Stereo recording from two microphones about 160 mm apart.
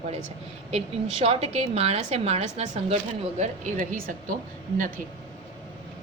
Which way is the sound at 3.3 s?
55° right (ahead or behind).